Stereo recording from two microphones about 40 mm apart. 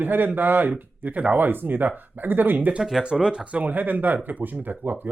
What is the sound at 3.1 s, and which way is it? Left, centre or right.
Speech, centre.